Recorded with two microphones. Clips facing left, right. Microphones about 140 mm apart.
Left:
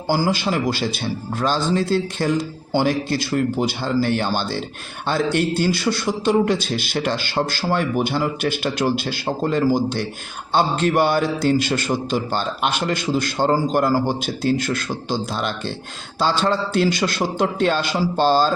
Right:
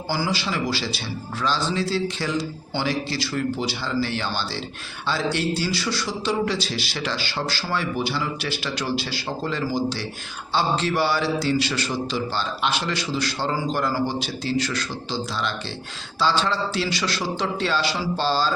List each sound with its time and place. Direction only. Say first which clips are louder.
0.1 s a man's voice: left 6 dB; 50° left (ahead or behind)